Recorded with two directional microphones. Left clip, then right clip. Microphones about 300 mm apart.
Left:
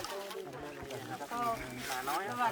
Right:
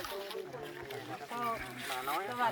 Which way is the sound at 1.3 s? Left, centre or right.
Right.